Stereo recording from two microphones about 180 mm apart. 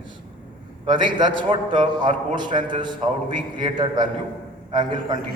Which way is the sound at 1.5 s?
30° right (ahead or behind).